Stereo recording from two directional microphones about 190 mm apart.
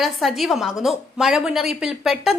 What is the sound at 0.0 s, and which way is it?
A woman's voice, centre (ahead or behind).